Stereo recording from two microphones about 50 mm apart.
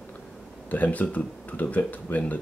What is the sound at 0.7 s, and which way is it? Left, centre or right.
Speech, left.